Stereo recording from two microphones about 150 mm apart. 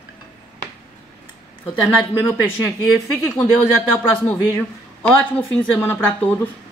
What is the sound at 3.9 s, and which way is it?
A woman's voice, 15° left (ahead or behind).